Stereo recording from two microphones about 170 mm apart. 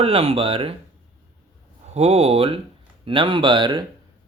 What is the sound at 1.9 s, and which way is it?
Speech, 35° right (ahead or behind).